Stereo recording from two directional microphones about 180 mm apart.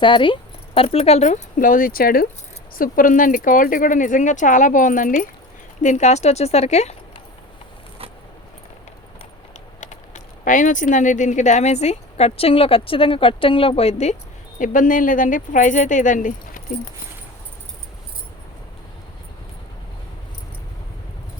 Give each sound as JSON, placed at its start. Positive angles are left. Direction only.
{"t": 0.0, "sound": "speech", "side_deg": 30}
{"t": 10.4, "sound": "speech", "side_deg": 45}
{"t": 14.6, "sound": "speech", "side_deg": 45}